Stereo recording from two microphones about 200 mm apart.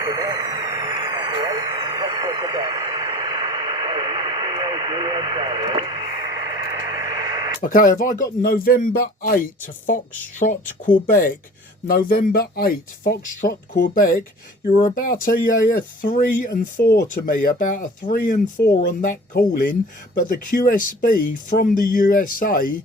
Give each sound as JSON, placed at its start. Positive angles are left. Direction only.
{"t": 0.0, "sound": "vehicle", "side_deg": -20}
{"t": 7.6, "sound": "speech", "side_deg": 45}